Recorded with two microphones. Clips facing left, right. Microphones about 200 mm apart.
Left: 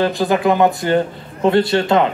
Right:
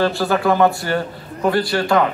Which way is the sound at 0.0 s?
15° left (ahead or behind).